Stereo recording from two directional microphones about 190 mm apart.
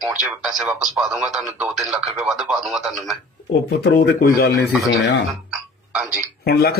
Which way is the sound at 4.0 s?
55° left (ahead or behind).